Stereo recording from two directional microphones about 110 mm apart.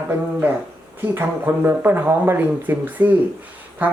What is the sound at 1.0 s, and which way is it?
Speech, 20° right (ahead or behind).